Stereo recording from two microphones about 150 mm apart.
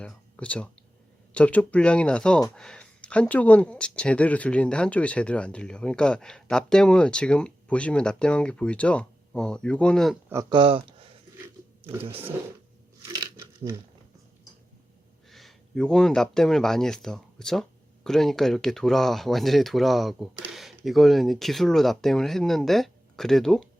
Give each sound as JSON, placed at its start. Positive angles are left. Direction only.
{"t": 0.0, "sound": "a sound", "side_deg": 10}
{"t": 1.3, "sound": "speech", "side_deg": 10}
{"t": 10.5, "sound": "speech", "side_deg": -35}
{"t": 11.8, "sound": "speech", "side_deg": -15}
{"t": 13.1, "sound": "a sound", "side_deg": -25}
{"t": 15.3, "sound": "speech", "side_deg": 0}